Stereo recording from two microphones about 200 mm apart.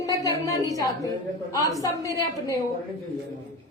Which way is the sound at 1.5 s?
15° left (ahead or behind).